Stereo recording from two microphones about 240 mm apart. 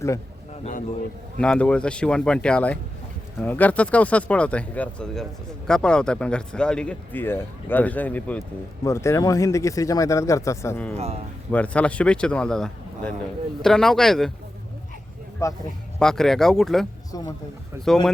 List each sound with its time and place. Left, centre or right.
0.6 s speech: left
1.4 s speech: centre
10.9 s speech: right
11.5 s speech: centre
15.4 s speech: centre
17.1 s speech: centre
17.8 s speech: centre